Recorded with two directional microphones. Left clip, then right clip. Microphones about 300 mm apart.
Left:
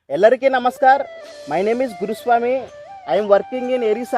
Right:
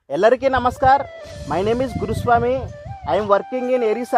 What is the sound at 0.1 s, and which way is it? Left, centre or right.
Speech, centre.